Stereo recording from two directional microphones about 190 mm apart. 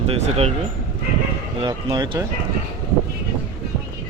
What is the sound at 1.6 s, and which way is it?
Speech, 25° right (ahead or behind).